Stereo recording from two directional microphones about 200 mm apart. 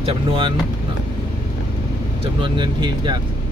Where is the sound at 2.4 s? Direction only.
25° right (ahead or behind).